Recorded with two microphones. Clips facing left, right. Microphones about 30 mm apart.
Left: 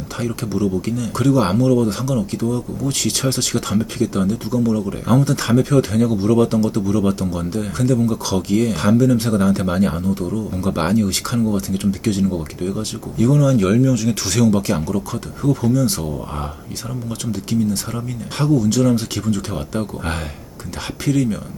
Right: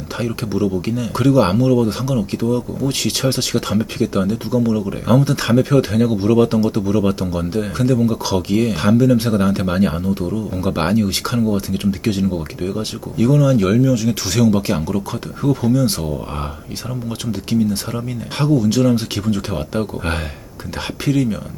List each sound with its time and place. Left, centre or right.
0.2 s speech: centre